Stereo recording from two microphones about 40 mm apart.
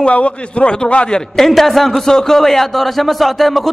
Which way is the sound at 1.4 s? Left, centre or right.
Centre.